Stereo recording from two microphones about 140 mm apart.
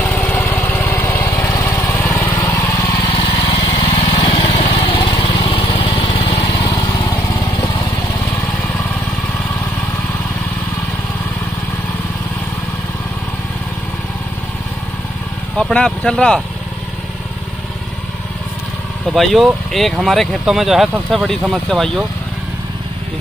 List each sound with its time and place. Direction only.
0.0 s vehicle: 10° left (ahead or behind)
1.3 s lawn mower: 25° left (ahead or behind)
2.3 s vehicle: 25° left (ahead or behind)
3.3 s lawn mower: 30° left (ahead or behind)
4.5 s lawn mower: 55° left (ahead or behind)
4.9 s lawn mower: 35° left (ahead or behind)
6.3 s lawn mower: 25° left (ahead or behind)
7.6 s vehicle: 30° left (ahead or behind)
15.5 s speech: 5° left (ahead or behind)
19.1 s speech: centre (ahead or behind)